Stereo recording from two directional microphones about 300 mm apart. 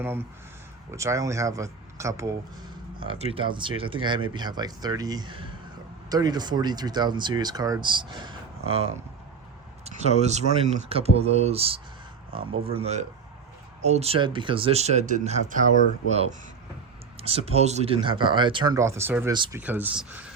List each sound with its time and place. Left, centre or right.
0.0 s speech: centre